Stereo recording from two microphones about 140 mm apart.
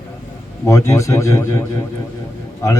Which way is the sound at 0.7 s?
20° left (ahead or behind).